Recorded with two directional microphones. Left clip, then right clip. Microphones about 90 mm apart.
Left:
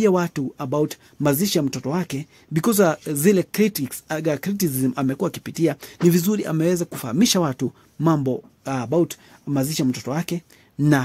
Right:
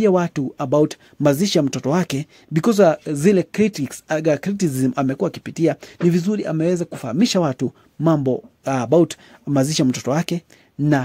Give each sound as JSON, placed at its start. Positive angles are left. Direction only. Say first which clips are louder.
{"t": 0.0, "sound": "speech", "louder": "right 2 dB", "side_deg": -30}
{"t": 2.5, "sound": "speech", "louder": "right 4 dB", "side_deg": -30}
{"t": 6.0, "sound": "speech", "louder": "even", "side_deg": -5}
{"t": 8.6, "sound": "speech", "louder": "right 5 dB", "side_deg": -45}